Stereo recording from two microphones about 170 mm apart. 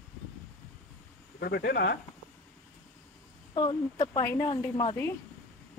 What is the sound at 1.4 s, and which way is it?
Speech, 70° left (ahead or behind).